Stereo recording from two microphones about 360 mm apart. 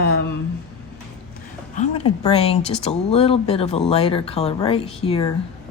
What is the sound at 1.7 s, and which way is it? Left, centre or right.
Speech, centre.